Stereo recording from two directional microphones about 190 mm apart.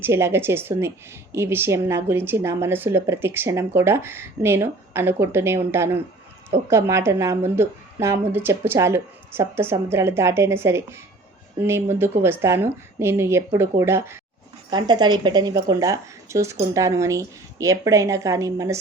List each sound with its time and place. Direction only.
0.0 s a woman's voice: 15° right (ahead or behind)